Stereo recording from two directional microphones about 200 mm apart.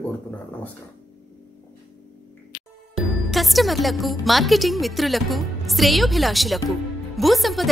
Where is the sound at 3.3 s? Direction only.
Centre (ahead or behind).